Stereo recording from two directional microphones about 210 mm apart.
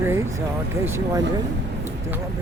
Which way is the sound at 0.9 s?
10° right (ahead or behind).